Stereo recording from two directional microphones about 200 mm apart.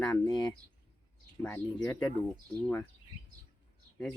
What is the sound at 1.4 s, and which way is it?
Speech, 10° left (ahead or behind).